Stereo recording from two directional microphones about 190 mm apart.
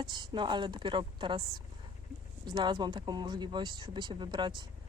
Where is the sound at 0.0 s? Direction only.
25° right (ahead or behind).